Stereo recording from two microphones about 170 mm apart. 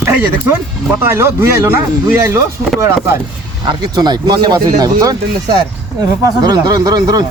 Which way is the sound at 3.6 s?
25° right (ahead or behind).